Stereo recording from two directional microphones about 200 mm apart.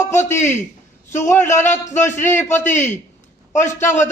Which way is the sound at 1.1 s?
15° left (ahead or behind).